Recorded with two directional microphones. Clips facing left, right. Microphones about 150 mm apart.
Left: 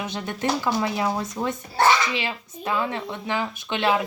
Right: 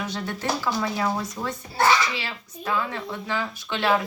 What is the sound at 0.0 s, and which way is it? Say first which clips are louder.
Speech: left 2 dB; 20° left (ahead or behind).